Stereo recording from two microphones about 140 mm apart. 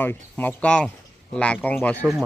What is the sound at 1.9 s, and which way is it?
Speech, 20° right (ahead or behind).